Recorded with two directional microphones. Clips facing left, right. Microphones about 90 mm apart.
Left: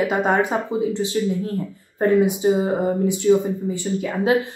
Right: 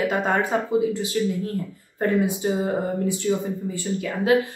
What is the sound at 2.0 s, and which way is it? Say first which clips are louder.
A woman's voice: left 5 dB; 20° left (ahead or behind).